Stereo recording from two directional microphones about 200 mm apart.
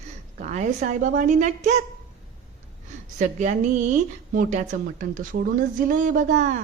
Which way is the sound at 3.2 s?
35° right (ahead or behind).